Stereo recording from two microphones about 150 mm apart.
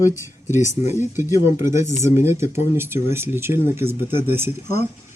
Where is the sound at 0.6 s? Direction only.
50° left (ahead or behind).